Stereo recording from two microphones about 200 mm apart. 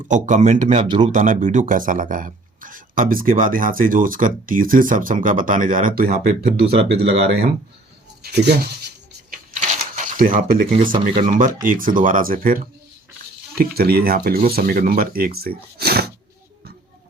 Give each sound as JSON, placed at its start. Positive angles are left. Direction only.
{"t": 0.1, "sound": "speech", "side_deg": -35}
{"t": 0.7, "sound": "speech", "side_deg": -25}
{"t": 1.1, "sound": "a man's voice", "side_deg": -40}
{"t": 6.7, "sound": "speech", "side_deg": -30}
{"t": 8.2, "sound": "speech", "side_deg": -55}
{"t": 9.6, "sound": "cash register", "side_deg": -40}
{"t": 11.2, "sound": "a man's voice", "side_deg": -40}